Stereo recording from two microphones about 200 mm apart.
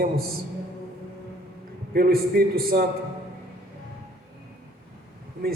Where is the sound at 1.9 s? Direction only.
50° right (ahead or behind).